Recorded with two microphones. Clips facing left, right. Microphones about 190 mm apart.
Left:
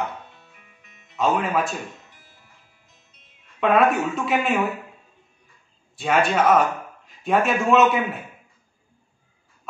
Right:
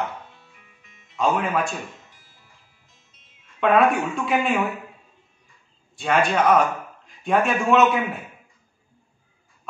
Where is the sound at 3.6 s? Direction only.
Centre (ahead or behind).